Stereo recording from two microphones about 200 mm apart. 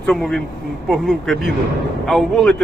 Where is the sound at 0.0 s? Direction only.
Centre (ahead or behind).